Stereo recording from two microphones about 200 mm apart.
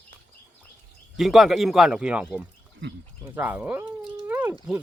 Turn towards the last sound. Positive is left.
turn(degrees=-10)  # may be behind; listen again after turning